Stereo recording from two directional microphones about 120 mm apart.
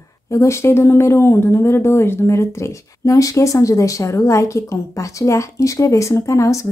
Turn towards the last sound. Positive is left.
turn(degrees=25)  # may be behind; listen again after turning